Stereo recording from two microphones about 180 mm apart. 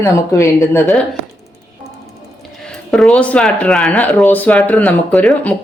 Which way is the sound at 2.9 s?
5° left (ahead or behind).